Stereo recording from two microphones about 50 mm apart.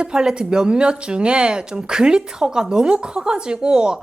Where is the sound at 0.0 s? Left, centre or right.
Centre.